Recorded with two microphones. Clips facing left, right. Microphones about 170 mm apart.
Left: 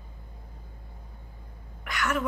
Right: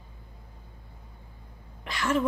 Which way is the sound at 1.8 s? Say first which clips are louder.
Right 3 dB; 25° right (ahead or behind).